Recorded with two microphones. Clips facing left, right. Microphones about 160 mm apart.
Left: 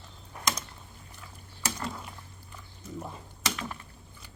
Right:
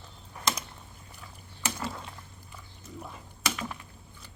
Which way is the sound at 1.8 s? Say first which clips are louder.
Even; 5° right (ahead or behind).